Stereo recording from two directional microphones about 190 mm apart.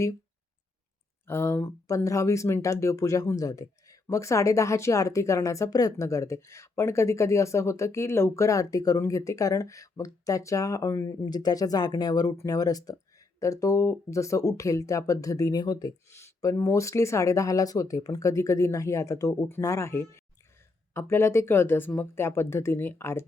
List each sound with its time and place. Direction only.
1.3 s speech: 15° left (ahead or behind)